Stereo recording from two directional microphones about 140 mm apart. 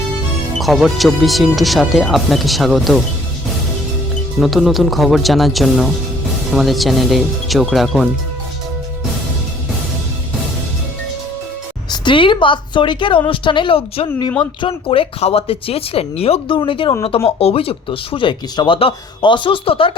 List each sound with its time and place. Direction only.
0.6 s speech: centre (ahead or behind)
4.4 s speech: centre (ahead or behind)
11.9 s speech: 35° left (ahead or behind)